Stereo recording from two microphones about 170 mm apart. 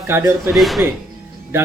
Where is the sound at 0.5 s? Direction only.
Centre (ahead or behind).